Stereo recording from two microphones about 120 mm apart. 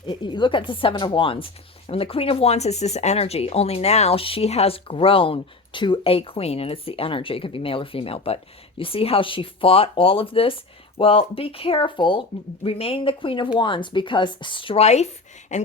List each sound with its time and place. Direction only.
0.0 s speech: 40° left (ahead or behind)
14.8 s speech: 70° left (ahead or behind)